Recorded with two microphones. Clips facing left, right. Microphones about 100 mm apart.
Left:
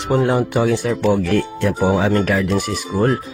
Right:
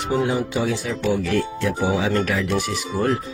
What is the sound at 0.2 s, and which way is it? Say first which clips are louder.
Speech: left 6 dB; 60° left (ahead or behind).